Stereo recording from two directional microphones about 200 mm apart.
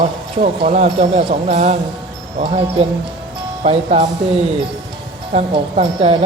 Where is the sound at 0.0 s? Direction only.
35° right (ahead or behind).